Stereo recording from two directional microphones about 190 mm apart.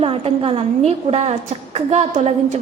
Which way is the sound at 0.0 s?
30° right (ahead or behind).